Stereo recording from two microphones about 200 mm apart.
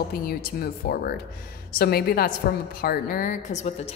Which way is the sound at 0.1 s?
45° left (ahead or behind).